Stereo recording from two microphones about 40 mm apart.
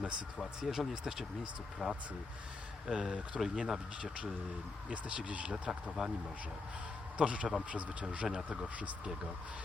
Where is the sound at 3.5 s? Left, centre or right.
Centre.